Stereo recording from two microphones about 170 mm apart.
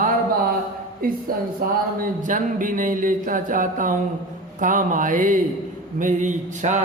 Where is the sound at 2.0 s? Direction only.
50° right (ahead or behind).